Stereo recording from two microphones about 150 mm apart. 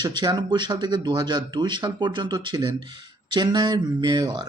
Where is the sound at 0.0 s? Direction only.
30° right (ahead or behind).